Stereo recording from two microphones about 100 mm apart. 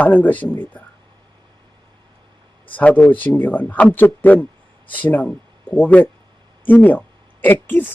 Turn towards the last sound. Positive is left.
turn(degrees=20)  # may be behind; listen again after turning